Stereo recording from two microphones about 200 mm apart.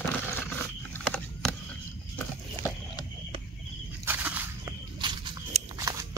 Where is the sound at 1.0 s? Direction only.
5° left (ahead or behind).